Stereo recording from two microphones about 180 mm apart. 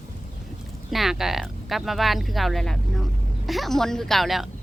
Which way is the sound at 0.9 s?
Centre (ahead or behind).